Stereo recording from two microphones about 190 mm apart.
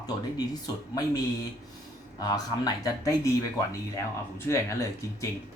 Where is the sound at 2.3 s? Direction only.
20° left (ahead or behind).